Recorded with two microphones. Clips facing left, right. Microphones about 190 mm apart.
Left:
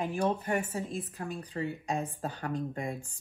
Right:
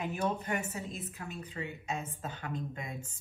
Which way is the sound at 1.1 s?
35° left (ahead or behind).